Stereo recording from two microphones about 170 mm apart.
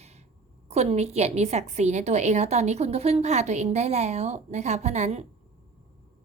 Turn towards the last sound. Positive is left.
turn(degrees=-40)  # may be behind; listen again after turning